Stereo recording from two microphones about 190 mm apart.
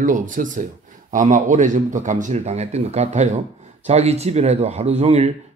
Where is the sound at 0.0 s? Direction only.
45° right (ahead or behind).